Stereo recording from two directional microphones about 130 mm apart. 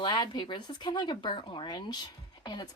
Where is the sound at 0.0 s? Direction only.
35° left (ahead or behind).